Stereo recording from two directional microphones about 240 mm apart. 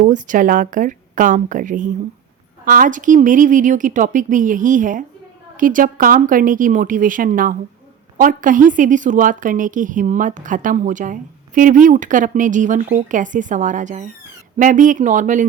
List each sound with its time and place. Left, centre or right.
0.0 s a woman's voice: right